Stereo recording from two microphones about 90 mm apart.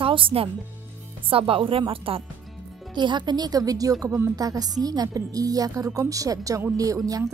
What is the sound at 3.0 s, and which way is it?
A woman's voice, 60° right (ahead or behind).